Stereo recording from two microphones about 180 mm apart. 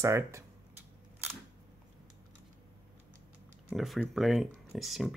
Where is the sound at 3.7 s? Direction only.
Centre (ahead or behind).